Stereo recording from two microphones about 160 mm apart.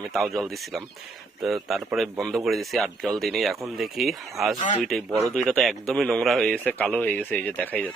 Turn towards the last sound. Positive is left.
turn(degrees=10)  # may be behind; listen again after turning